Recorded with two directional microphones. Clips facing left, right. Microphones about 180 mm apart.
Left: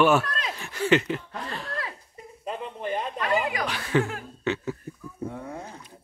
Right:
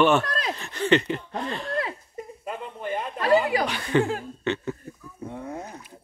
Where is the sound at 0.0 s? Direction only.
5° left (ahead or behind).